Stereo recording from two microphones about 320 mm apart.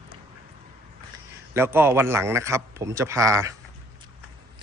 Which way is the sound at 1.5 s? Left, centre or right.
Centre.